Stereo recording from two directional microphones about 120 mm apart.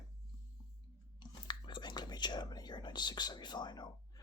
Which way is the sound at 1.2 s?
40° left (ahead or behind).